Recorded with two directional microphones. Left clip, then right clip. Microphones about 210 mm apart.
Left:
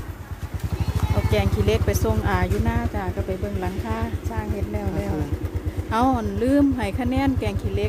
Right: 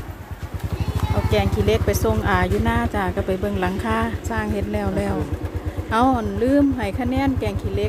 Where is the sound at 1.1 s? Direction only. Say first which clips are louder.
Right 3 dB; 5° right (ahead or behind).